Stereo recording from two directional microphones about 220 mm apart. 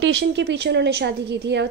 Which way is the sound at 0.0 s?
55° right (ahead or behind).